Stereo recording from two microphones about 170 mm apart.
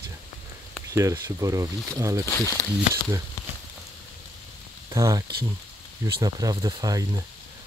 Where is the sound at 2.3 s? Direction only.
15° left (ahead or behind).